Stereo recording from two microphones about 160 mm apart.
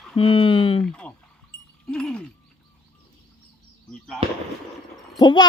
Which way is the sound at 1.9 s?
5° left (ahead or behind).